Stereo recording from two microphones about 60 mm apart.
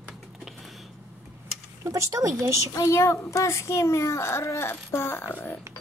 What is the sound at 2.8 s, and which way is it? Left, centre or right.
A child's voice, left.